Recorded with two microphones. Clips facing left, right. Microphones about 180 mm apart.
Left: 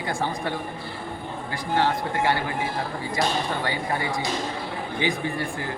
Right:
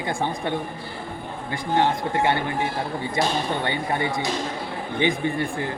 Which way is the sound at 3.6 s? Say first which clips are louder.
Right 2 dB; 25° right (ahead or behind).